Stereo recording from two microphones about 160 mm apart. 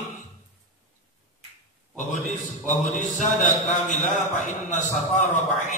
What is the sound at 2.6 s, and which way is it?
A man's voice, 50° left (ahead or behind).